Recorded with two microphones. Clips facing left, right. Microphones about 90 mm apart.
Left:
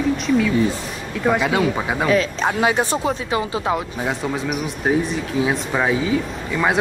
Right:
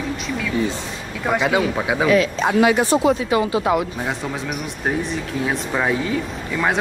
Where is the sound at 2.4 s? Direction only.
30° left (ahead or behind).